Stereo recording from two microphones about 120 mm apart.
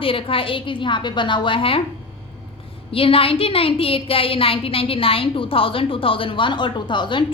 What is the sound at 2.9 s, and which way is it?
A woman's voice, 50° left (ahead or behind).